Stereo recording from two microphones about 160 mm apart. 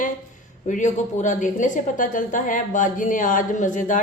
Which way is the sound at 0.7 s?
50° left (ahead or behind).